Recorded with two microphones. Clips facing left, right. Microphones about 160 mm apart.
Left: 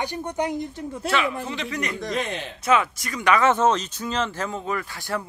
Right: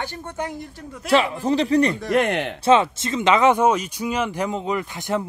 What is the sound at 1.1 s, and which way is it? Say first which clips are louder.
Speech: right 8 dB; 40° right (ahead or behind).